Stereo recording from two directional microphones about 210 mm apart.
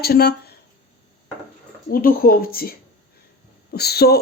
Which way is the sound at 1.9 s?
45° left (ahead or behind).